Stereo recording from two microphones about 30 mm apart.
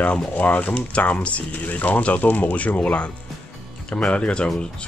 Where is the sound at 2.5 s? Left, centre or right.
Left.